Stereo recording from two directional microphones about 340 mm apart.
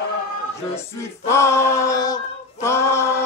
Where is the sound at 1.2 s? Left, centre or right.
Centre.